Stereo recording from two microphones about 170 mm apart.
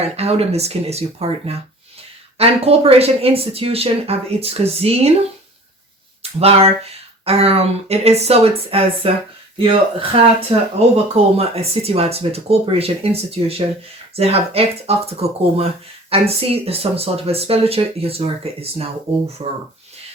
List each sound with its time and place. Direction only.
0.0 s speech: 35° right (ahead or behind)
6.4 s speech: 35° right (ahead or behind)